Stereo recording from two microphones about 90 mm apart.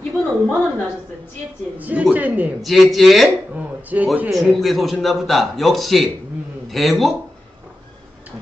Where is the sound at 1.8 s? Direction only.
15° right (ahead or behind).